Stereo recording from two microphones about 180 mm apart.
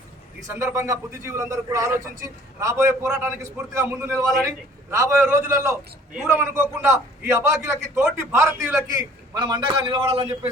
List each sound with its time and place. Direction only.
0.4 s a man's voice: 15° right (ahead or behind)